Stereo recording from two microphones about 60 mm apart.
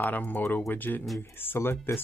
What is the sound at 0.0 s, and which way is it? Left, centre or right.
Speech, left.